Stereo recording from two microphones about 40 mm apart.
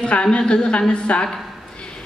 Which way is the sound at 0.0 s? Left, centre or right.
Left.